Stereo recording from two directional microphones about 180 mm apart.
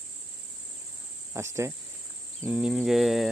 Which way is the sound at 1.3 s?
15° right (ahead or behind).